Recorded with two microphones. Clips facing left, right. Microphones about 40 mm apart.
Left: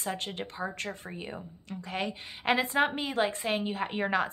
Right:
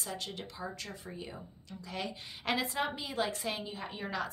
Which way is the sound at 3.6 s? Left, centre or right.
Left.